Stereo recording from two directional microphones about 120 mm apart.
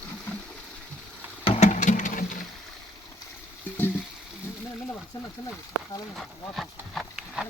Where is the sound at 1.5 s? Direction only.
70° left (ahead or behind); by 2.4 s 90° left.